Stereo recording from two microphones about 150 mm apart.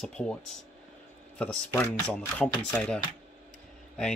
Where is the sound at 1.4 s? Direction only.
15° left (ahead or behind).